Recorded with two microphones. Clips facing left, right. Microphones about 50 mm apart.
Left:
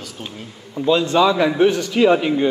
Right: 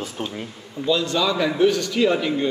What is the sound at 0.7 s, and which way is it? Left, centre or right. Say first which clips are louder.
A man's voice: left 5 dB; left.